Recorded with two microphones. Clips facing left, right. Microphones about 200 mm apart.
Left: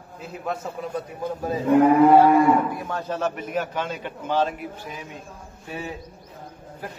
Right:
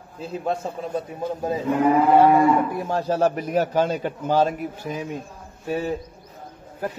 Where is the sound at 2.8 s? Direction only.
30° right (ahead or behind).